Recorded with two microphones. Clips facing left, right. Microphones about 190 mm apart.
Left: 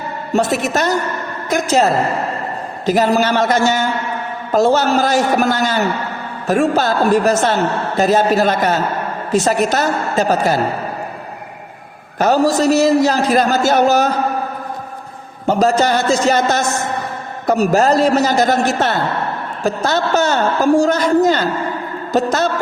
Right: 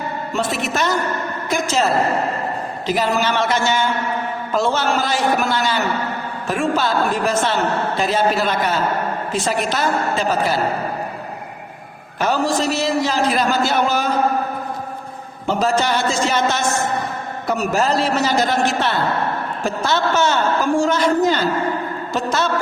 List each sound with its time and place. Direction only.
0.3 s a woman's voice: 40° left (ahead or behind)
12.2 s a man's voice: 40° left (ahead or behind)
15.4 s a woman's voice: 40° left (ahead or behind)